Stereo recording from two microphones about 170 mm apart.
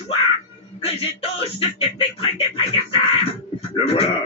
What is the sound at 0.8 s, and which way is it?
Speech, 35° left (ahead or behind).